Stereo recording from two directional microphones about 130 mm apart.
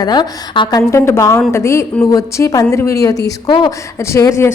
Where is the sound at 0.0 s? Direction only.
35° left (ahead or behind).